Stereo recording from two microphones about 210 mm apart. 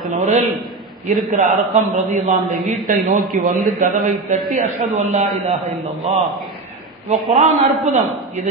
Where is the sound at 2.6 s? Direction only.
Centre (ahead or behind).